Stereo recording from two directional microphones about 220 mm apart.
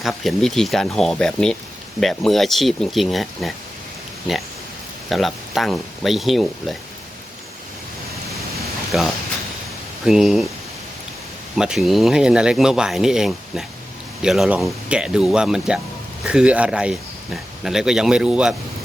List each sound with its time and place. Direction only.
0.0 s speech: centre (ahead or behind)
5.0 s speech: centre (ahead or behind)
8.5 s a sound: centre (ahead or behind)
10.1 s speech: centre (ahead or behind)
11.5 s speech: 5° right (ahead or behind)